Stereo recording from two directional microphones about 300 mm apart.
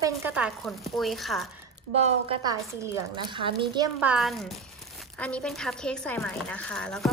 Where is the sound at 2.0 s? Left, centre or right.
Centre.